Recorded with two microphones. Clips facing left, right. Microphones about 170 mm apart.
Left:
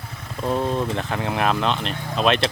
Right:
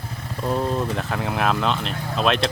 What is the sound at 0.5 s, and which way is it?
Speech, 5° left (ahead or behind).